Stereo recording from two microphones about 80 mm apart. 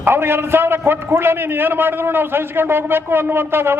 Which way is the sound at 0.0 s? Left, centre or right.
Right.